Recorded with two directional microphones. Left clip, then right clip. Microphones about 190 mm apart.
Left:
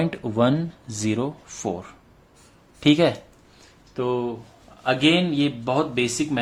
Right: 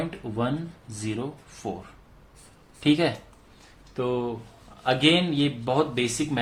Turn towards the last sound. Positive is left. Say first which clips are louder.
# left 3 dB
turn(degrees=15)  # may be behind; listen again after turning